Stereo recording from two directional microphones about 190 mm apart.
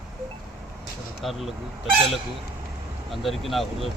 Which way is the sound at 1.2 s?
Centre (ahead or behind).